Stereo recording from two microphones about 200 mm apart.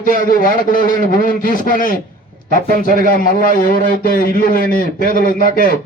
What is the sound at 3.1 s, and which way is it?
A man's voice, 45° left (ahead or behind).